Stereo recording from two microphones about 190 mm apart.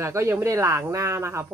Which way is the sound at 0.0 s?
15° right (ahead or behind).